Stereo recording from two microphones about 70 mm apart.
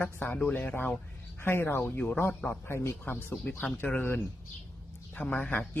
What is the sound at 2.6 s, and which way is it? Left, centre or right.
Speech, left.